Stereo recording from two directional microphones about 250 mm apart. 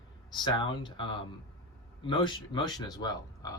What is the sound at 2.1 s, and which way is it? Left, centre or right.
Speech, centre.